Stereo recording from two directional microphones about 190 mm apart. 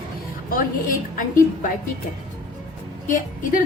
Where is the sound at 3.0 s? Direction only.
45° left (ahead or behind).